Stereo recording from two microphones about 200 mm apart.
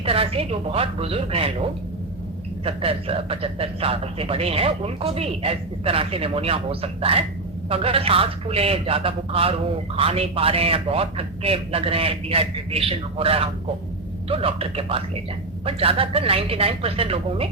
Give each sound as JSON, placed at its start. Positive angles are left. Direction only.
{"t": 0.0, "sound": "speech", "side_deg": -30}
{"t": 2.6, "sound": "speech", "side_deg": -30}